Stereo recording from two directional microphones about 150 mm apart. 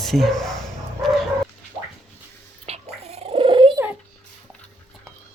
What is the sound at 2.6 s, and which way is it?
Cat, 45° right (ahead or behind).